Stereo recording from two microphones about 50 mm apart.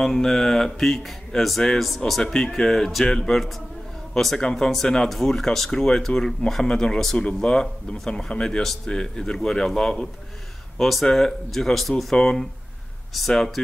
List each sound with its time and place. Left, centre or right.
0.0 s speech: centre
7.5 s speech: centre